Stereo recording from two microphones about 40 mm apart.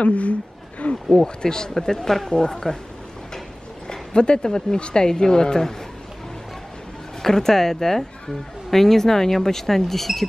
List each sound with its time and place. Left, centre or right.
0.0 s a sound: left
1.1 s speech: centre
3.8 s speech: left
7.2 s speech: centre